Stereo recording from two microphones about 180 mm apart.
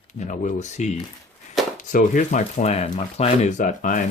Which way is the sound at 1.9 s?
45° left (ahead or behind).